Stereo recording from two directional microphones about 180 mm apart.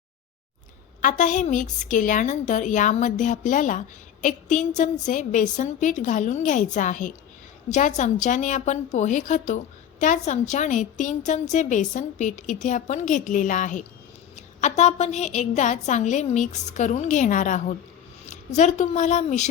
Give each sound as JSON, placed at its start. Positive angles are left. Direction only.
{"t": 1.0, "sound": "a woman's voice", "side_deg": 45}